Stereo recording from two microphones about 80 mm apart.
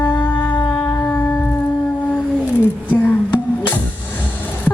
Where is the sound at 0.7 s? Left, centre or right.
Left.